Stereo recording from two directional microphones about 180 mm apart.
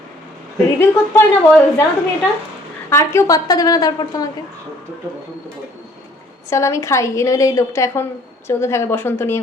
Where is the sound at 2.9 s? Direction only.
15° left (ahead or behind).